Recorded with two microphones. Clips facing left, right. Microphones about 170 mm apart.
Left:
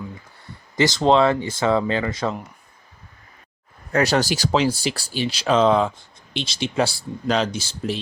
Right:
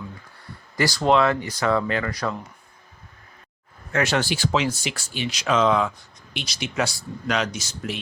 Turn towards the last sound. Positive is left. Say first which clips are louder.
# left 4 dB
turn(degrees=30)  # may be behind; listen again after turning